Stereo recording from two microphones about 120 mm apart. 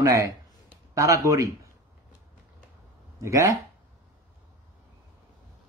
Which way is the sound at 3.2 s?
25° right (ahead or behind).